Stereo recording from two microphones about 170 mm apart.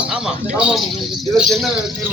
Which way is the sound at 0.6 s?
Centre (ahead or behind).